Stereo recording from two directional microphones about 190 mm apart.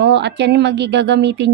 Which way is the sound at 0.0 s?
65° right (ahead or behind).